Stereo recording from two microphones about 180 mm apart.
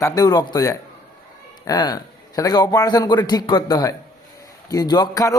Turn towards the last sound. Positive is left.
turn(degrees=20)  # may be behind; listen again after turning